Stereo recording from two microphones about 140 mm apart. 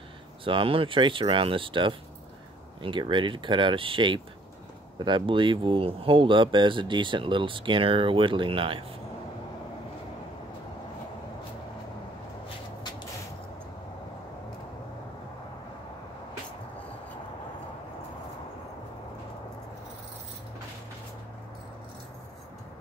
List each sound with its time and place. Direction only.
0.4 s speech: 40° right (ahead or behind)